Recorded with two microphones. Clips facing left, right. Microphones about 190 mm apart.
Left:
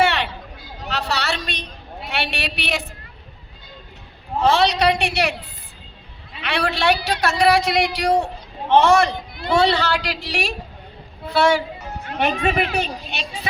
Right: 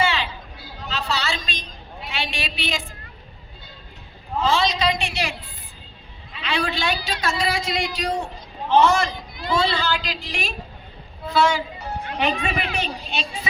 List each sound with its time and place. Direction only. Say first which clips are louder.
0.0 s a sound: left 4 dB; 65° left (ahead or behind)
4.4 s a man's voice: left 4 dB; 65° left (ahead or behind)
6.4 s a man's voice: left 4 dB; 70° left (ahead or behind)
12.0 s a woman's voice: left 4 dB; 45° left (ahead or behind)
13.1 s a woman's voice: even; 65° left (ahead or behind)